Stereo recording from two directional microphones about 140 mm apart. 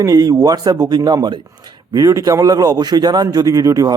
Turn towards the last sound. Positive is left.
turn(degrees=-25)  # may be behind; listen again after turning